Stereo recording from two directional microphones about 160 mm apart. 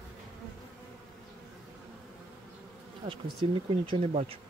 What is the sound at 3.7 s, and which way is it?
Speech, 35° right (ahead or behind).